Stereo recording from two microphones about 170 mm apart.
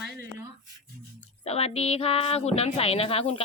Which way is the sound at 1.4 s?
35° left (ahead or behind).